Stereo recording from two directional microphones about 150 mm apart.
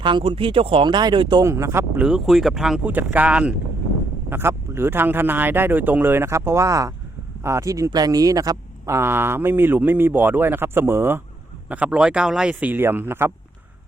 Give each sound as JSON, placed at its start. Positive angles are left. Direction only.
{"t": 0.0, "sound": "speech", "side_deg": -30}
{"t": 1.5, "sound": "speech", "side_deg": -20}
{"t": 2.0, "sound": "speech", "side_deg": -5}